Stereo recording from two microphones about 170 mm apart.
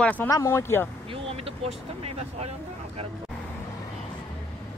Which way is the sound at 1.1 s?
35° right (ahead or behind).